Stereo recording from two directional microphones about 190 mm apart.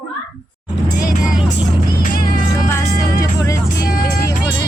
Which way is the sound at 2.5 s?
15° left (ahead or behind).